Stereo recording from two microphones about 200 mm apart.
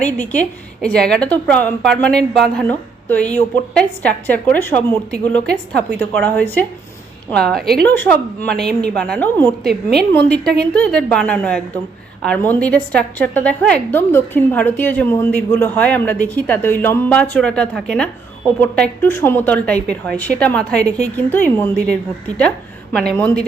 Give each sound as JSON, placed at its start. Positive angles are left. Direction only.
{"t": 0.0, "sound": "a woman's voice", "side_deg": 10}
{"t": 5.7, "sound": "a woman's voice", "side_deg": -55}
{"t": 6.2, "sound": "a woman's voice", "side_deg": 10}